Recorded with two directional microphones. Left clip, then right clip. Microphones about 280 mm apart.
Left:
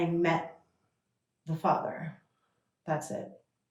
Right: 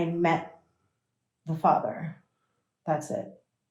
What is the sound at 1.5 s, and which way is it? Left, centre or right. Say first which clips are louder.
Speech: right 5 dB; centre.